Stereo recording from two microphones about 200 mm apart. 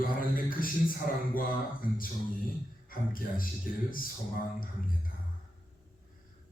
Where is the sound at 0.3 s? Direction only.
45° left (ahead or behind).